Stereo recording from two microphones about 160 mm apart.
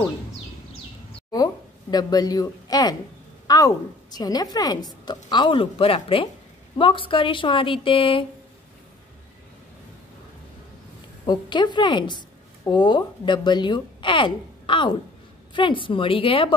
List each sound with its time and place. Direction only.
1.3 s a woman's voice: 25° left (ahead or behind)
11.2 s a woman's voice: 30° left (ahead or behind)